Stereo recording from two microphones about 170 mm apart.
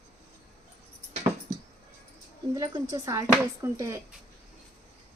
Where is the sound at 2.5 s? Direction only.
20° right (ahead or behind).